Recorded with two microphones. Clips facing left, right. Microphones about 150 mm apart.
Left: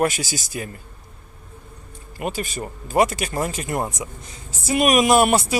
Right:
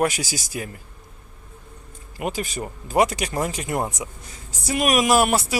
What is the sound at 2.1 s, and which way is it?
Speech, 15° right (ahead or behind).